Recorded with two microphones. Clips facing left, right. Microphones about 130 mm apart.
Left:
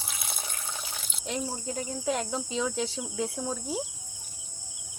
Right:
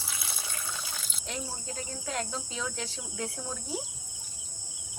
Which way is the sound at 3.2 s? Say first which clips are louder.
Left 5 dB; 5° left (ahead or behind).